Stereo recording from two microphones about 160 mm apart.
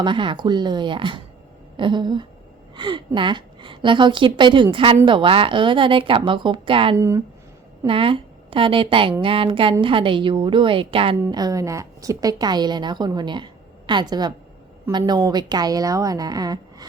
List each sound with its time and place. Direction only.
0.0 s a woman's voice: 30° right (ahead or behind)
6.9 s speech: 20° right (ahead or behind)
7.9 s a woman's voice: 35° right (ahead or behind)